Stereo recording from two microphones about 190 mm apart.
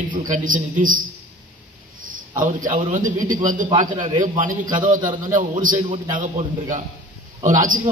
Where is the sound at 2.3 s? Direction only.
45° right (ahead or behind).